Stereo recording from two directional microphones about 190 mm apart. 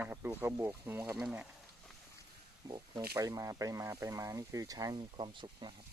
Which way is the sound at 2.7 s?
25° right (ahead or behind).